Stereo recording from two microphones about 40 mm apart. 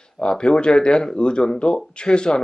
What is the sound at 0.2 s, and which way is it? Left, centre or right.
Speech, left.